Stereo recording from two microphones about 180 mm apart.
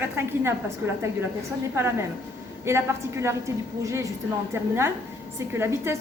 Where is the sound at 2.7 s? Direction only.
15° right (ahead or behind).